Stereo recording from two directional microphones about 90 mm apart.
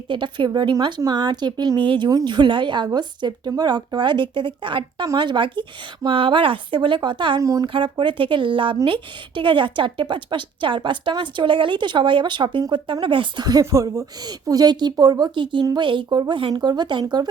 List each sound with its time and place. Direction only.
0.1 s speech: 65° right (ahead or behind)
6.1 s speech: 80° right
7.4 s speech: 40° right (ahead or behind)
7.7 s speech: 65° right (ahead or behind)
13.4 s speech: 45° right (ahead or behind)
15.8 s speech: 65° right (ahead or behind)
16.0 s speech: 50° right (ahead or behind)